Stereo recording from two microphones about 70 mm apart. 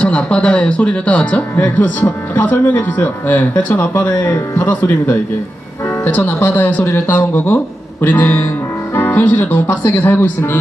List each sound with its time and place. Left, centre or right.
0.0 s speech: centre
6.8 s speech: left